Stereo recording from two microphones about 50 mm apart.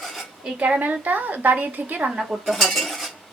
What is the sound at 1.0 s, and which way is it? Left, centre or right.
A woman's voice, right.